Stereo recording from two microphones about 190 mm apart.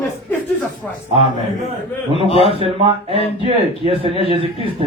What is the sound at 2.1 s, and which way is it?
A man's voice, 30° left (ahead or behind).